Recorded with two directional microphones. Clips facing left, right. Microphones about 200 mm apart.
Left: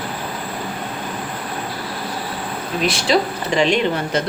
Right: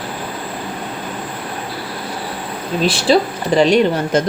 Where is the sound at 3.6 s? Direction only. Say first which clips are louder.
Right 5 dB; 40° right (ahead or behind).